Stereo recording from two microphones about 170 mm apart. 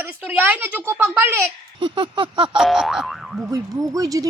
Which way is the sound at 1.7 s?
30° right (ahead or behind).